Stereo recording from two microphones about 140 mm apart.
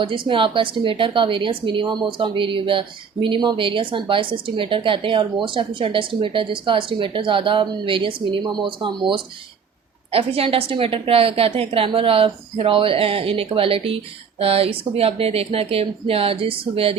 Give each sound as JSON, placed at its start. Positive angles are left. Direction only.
{"t": 0.0, "sound": "a woman's voice", "side_deg": -35}